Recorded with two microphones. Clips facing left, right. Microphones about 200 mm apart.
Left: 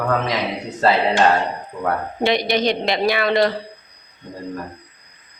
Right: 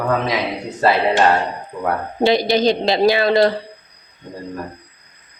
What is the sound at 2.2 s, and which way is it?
A man's voice, 30° right (ahead or behind).